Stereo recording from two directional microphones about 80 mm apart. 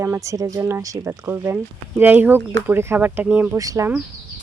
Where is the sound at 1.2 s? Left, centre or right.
Right.